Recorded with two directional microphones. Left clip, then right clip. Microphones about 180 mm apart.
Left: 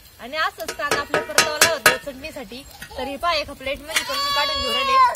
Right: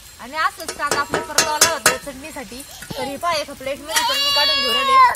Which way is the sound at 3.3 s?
Centre (ahead or behind).